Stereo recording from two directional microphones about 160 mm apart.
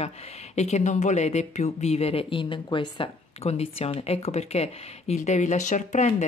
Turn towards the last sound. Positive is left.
turn(degrees=45)  # may be behind; listen again after turning